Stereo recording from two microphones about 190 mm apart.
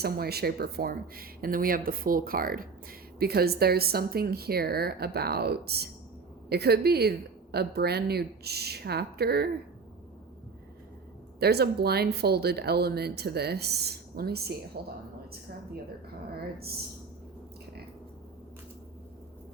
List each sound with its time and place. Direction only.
0.0 s speech: 55° right (ahead or behind)
11.3 s speech: 55° right (ahead or behind)